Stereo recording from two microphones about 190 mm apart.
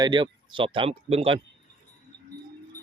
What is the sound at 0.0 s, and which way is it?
A man's voice, 25° right (ahead or behind).